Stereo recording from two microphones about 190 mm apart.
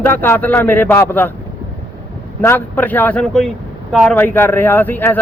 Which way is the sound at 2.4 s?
10° left (ahead or behind).